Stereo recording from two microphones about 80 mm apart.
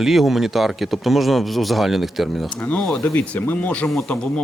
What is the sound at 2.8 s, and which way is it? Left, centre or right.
Speech, centre.